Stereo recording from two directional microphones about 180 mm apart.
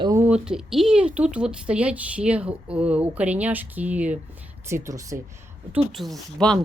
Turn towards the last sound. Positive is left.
turn(degrees=0)  # may be behind; listen again after turning